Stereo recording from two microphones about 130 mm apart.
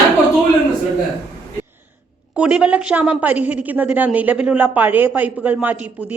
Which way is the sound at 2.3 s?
10° right (ahead or behind).